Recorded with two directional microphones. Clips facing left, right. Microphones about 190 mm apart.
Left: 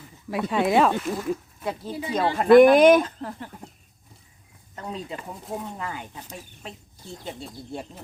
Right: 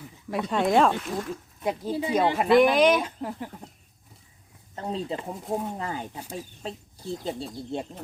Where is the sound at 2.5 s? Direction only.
50° left (ahead or behind).